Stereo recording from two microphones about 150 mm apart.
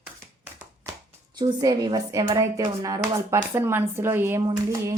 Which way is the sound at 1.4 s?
25° right (ahead or behind).